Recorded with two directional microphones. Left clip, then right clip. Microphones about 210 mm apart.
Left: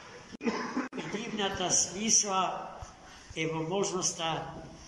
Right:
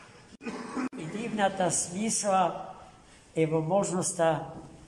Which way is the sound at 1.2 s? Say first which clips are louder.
Right 6 dB; 60° right (ahead or behind).